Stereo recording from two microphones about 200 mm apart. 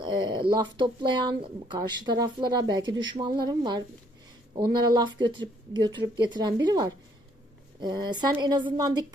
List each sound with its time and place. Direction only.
0.0 s speech: 25° right (ahead or behind)